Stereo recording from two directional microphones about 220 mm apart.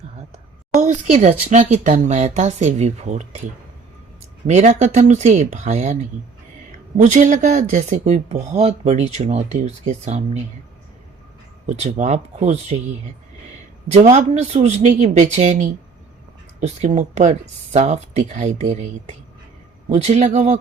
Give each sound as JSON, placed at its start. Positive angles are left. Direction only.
{"t": 0.8, "sound": "speech", "side_deg": -35}
{"t": 4.4, "sound": "speech", "side_deg": -30}
{"t": 11.6, "sound": "speech", "side_deg": -30}
{"t": 13.8, "sound": "speech", "side_deg": -30}